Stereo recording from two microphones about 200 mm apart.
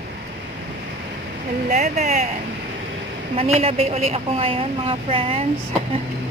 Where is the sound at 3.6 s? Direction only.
30° right (ahead or behind).